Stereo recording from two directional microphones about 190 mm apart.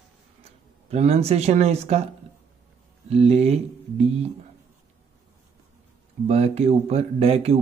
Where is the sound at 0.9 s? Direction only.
35° right (ahead or behind).